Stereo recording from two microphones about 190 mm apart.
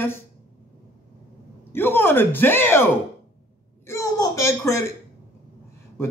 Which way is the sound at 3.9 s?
15° left (ahead or behind).